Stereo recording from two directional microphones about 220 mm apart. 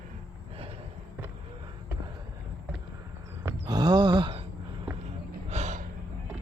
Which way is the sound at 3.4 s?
15° right (ahead or behind).